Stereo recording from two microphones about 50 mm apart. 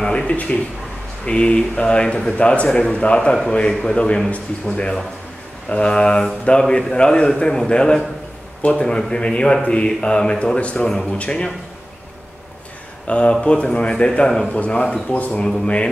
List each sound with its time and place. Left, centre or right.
0.0 s a man's voice: centre
13.0 s speech: left